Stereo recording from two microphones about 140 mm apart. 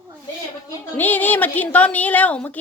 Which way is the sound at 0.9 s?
10° left (ahead or behind).